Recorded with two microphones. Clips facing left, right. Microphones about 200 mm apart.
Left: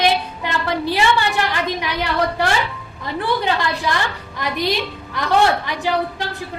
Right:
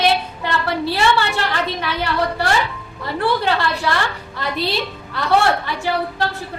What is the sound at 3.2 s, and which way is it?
A woman's voice, 15° left (ahead or behind).